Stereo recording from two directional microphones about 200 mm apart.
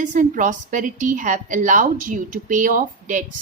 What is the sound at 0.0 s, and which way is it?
Speech, 40° right (ahead or behind).